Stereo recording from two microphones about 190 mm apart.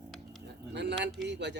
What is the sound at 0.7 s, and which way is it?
Speech, 65° right (ahead or behind).